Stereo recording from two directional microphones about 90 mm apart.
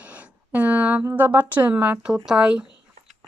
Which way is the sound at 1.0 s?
30° right (ahead or behind).